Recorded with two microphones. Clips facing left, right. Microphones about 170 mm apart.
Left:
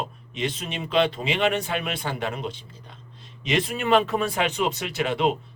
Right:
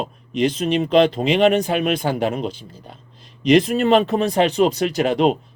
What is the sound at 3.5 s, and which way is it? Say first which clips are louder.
Speech: right 7 dB; 40° right (ahead or behind).